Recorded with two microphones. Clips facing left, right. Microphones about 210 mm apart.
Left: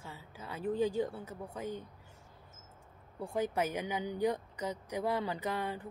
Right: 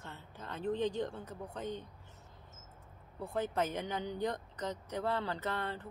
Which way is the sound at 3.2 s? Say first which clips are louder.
Left 1 dB; 10° left (ahead or behind).